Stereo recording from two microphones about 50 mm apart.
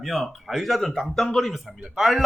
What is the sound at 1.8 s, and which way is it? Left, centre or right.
Speech, centre.